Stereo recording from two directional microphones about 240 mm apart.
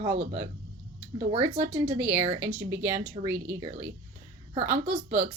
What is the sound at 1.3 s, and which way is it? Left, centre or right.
Speech, right.